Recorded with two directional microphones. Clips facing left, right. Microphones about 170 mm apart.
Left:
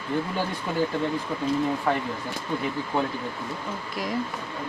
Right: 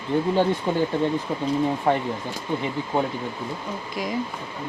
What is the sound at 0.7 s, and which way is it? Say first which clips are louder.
Speech: right 4 dB; 25° right (ahead or behind).